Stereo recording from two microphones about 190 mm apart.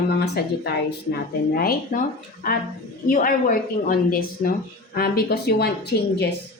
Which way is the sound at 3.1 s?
45° left (ahead or behind).